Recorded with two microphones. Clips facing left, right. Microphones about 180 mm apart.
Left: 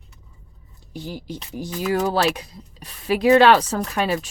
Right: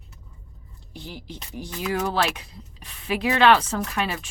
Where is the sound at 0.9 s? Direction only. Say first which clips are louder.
Left 6 dB; 40° left (ahead or behind).